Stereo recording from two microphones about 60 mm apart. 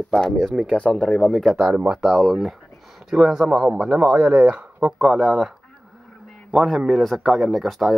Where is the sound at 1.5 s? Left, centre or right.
Right.